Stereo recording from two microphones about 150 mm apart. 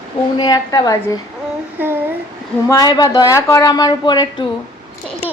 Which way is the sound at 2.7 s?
25° left (ahead or behind).